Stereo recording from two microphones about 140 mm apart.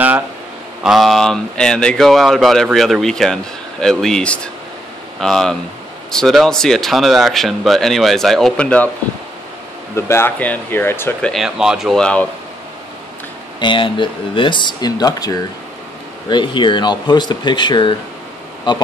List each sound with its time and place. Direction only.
0.8 s speech: centre (ahead or behind)
9.9 s speech: 20° left (ahead or behind)
11.1 s speech: 5° left (ahead or behind)
13.6 s speech: 35° left (ahead or behind)